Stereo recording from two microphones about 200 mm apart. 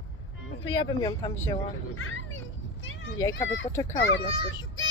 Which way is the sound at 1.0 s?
15° left (ahead or behind).